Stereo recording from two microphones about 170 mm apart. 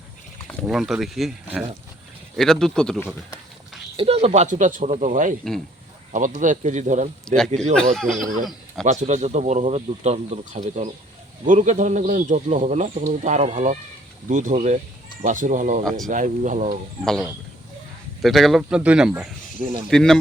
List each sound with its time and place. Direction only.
0.6 s speech: 5° right (ahead or behind)
3.9 s speech: 35° right (ahead or behind)
7.3 s speech: 5° left (ahead or behind)
8.8 s speech: 45° right (ahead or behind)
15.8 s speech: centre (ahead or behind)
16.0 s speech: 50° right (ahead or behind)
18.2 s speech: centre (ahead or behind)